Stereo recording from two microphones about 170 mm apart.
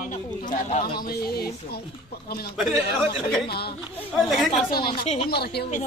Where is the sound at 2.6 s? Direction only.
Centre (ahead or behind).